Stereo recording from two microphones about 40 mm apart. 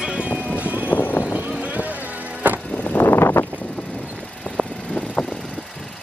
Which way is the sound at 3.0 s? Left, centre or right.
Left.